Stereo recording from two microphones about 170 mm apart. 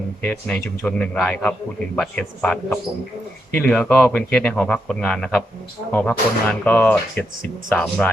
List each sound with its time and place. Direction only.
0.3 s a man's voice: 5° left (ahead or behind)